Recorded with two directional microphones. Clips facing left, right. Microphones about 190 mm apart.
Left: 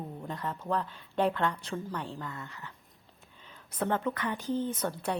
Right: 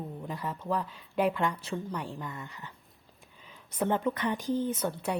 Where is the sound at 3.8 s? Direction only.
15° right (ahead or behind).